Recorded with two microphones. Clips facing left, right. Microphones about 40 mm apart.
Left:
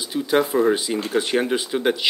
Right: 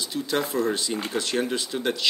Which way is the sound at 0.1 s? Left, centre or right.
Centre.